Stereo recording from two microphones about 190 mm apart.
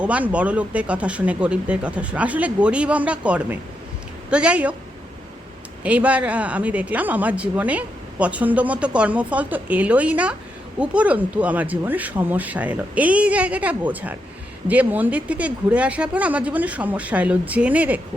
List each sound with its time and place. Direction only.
0.0 s a woman's voice: 5° right (ahead or behind)
5.8 s speech: 5° right (ahead or behind)